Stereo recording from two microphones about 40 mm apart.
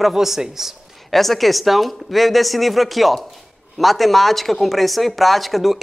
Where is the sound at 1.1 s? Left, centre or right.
Centre.